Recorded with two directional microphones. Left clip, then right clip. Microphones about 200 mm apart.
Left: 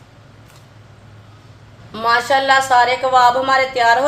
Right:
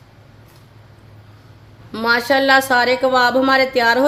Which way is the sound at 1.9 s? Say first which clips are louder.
Left 1 dB; 45° right (ahead or behind).